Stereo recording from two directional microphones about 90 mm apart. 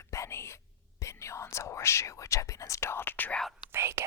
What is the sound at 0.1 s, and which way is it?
Whispering, 30° left (ahead or behind).